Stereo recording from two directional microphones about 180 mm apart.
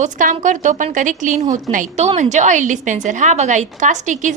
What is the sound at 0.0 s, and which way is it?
A woman's voice, 45° right (ahead or behind).